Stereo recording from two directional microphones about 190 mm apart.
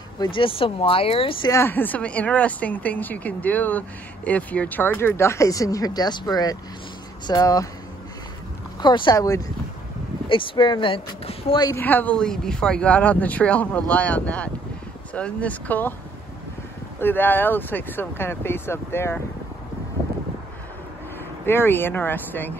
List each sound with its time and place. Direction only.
0.2 s speech: 25° left (ahead or behind)
1.5 s speech: 10° left (ahead or behind)
8.8 s speech: 25° left (ahead or behind)
11.7 s speech: 10° left (ahead or behind)
17.0 s speech: 10° left (ahead or behind)
21.5 s speech: 10° left (ahead or behind)